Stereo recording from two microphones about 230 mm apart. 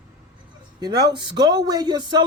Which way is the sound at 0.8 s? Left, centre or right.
Centre.